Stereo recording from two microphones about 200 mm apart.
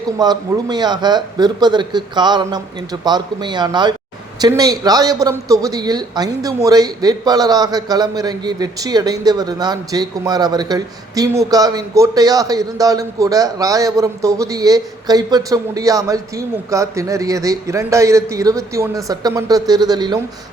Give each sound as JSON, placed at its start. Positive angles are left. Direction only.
{"t": 0.2, "sound": "speech", "side_deg": -20}